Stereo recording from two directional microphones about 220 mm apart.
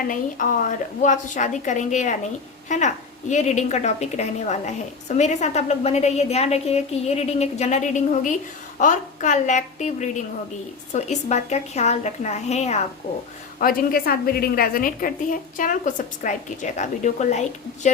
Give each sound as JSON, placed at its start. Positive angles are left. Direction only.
{"t": 0.1, "sound": "a woman's voice", "side_deg": 35}
{"t": 13.6, "sound": "a woman's voice", "side_deg": 40}